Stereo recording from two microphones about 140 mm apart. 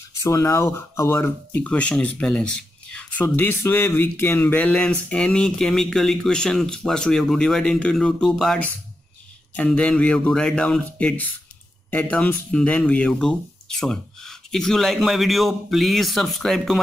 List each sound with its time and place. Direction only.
0.2 s speech: 20° left (ahead or behind); by 16.8 s centre (ahead or behind)